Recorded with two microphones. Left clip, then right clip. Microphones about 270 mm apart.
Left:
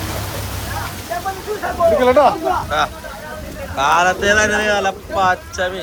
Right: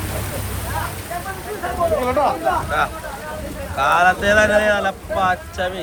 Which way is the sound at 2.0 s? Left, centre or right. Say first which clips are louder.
Left 10 dB; left.